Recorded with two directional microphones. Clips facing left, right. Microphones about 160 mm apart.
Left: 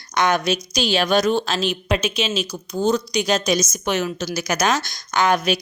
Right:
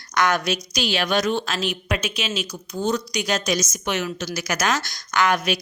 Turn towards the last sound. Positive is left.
turn(degrees=25)  # may be behind; listen again after turning